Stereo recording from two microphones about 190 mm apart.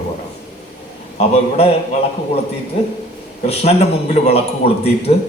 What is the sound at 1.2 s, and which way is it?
Speech, 30° left (ahead or behind).